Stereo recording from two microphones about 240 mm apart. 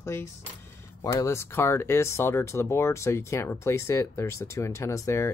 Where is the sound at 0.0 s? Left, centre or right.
Centre.